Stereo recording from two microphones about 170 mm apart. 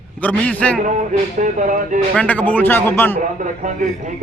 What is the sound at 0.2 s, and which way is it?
Speech, 10° left (ahead or behind).